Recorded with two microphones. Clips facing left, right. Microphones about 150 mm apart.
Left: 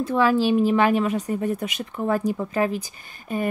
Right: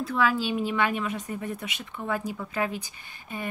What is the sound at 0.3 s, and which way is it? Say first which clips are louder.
Speech: left 9 dB; 40° left (ahead or behind).